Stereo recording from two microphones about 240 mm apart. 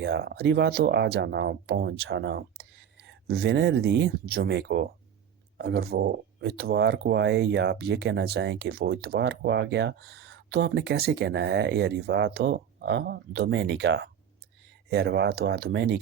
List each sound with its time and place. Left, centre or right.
0.0 s speech: right